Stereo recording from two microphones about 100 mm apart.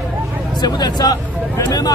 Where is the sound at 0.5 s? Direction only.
45° left (ahead or behind).